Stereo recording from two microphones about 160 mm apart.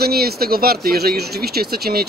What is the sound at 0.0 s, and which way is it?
A man's voice, 75° right (ahead or behind).